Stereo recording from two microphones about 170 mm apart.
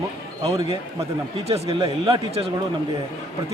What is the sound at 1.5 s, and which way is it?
Speech, 30° right (ahead or behind).